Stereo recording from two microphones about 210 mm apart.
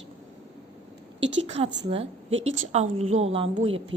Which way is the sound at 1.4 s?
30° right (ahead or behind).